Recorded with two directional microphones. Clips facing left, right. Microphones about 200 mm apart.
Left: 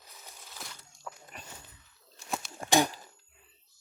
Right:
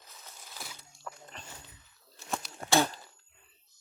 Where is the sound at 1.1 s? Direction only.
10° left (ahead or behind).